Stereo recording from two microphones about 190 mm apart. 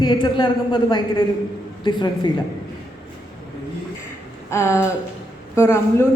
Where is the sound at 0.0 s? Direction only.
25° left (ahead or behind).